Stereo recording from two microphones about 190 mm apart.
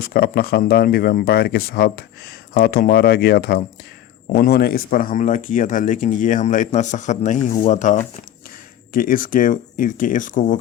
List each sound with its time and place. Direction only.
0.0 s speech: 55° left (ahead or behind)